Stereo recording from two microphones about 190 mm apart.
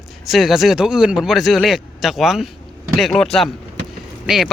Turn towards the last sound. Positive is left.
turn(degrees=0)  # may be behind; listen again after turning